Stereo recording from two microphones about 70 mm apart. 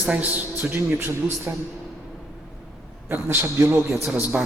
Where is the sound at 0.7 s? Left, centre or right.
Right.